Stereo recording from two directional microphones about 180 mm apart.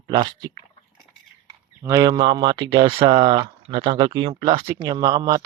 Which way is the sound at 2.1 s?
25° right (ahead or behind).